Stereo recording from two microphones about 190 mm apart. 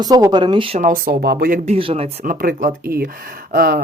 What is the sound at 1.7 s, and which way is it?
Speech, 30° right (ahead or behind).